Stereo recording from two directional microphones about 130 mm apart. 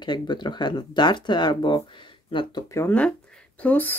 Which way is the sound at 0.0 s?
35° left (ahead or behind).